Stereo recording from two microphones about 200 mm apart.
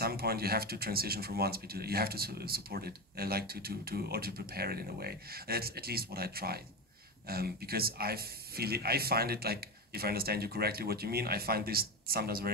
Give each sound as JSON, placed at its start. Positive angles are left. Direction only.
{"t": 0.0, "sound": "speech", "side_deg": -50}